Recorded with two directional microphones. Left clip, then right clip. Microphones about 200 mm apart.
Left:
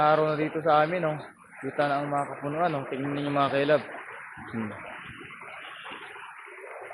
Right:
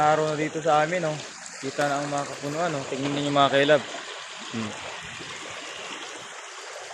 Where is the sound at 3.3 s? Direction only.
20° right (ahead or behind).